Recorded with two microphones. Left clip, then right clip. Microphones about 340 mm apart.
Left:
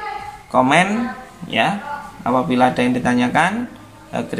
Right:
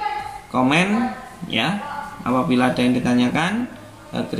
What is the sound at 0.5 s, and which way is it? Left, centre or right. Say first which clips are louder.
Speech: left 5 dB; left.